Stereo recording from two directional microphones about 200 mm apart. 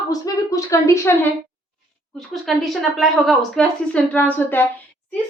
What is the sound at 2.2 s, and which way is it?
Speech, centre (ahead or behind).